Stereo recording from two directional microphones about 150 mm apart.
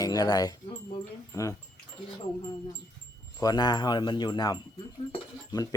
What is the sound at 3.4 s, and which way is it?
Speech, 25° left (ahead or behind).